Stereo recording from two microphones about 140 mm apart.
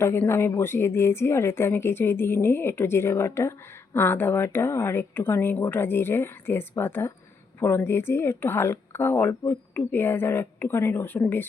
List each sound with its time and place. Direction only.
0.0 s speech: 15° left (ahead or behind)